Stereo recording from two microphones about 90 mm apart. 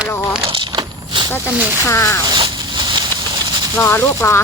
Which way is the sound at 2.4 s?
60° right (ahead or behind).